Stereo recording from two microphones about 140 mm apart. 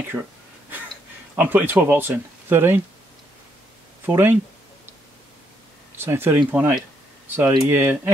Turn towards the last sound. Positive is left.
turn(degrees=-15)  # may be behind; listen again after turning